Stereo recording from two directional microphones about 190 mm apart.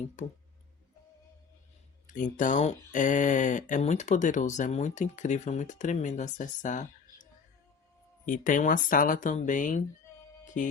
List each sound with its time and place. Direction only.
0.2 s speech: 40° left (ahead or behind)
2.0 s speech: 40° left (ahead or behind)
8.3 s speech: 45° left (ahead or behind)
10.4 s music: 40° left (ahead or behind)